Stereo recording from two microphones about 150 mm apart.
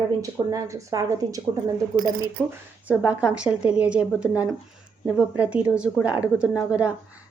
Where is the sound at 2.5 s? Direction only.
10° right (ahead or behind).